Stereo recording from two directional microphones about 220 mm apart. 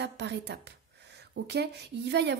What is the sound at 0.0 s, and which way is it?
Speech, 50° right (ahead or behind).